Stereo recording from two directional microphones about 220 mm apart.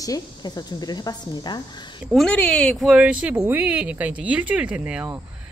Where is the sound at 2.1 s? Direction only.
5° left (ahead or behind).